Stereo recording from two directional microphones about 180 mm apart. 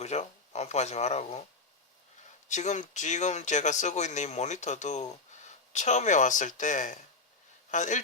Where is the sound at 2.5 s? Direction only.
40° left (ahead or behind).